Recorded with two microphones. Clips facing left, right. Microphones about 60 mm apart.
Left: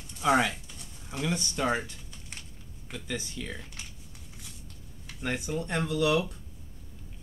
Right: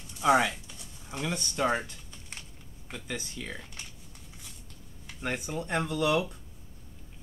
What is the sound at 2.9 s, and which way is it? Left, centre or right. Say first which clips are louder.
Speech: left 1 dB; centre.